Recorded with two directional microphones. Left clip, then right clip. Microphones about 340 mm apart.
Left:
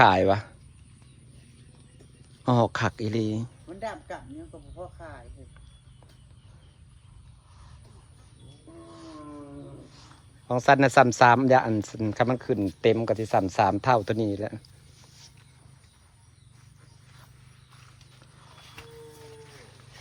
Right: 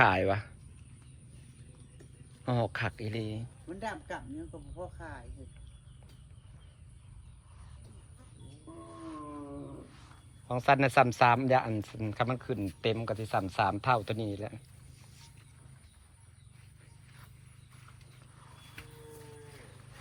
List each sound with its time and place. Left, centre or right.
0.0 s speech: centre
2.4 s speech: centre
4.8 s speech: right
10.5 s speech: centre